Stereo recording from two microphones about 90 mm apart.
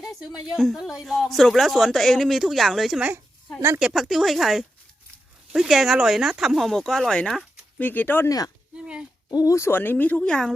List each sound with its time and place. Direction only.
0.0 s a sound: centre (ahead or behind)
0.3 s speech: centre (ahead or behind)
7.8 s speech: 20° left (ahead or behind)
8.7 s a sound: 10° right (ahead or behind)
9.3 s speech: 45° left (ahead or behind)
9.6 s speech: 25° left (ahead or behind); by 10.5 s 10° left (ahead or behind)